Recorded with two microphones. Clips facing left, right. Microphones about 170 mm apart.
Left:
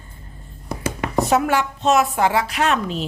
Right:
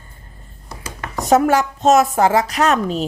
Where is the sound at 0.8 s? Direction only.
25° left (ahead or behind).